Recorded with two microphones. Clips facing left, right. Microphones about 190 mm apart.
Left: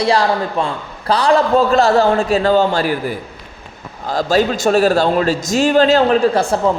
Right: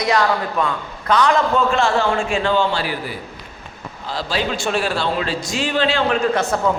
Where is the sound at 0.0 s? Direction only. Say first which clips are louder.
Left 3 dB; 30° left (ahead or behind).